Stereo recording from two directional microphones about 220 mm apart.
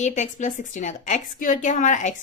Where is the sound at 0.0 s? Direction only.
35° left (ahead or behind).